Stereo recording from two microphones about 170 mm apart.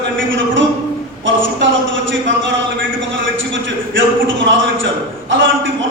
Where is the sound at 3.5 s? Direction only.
90° right.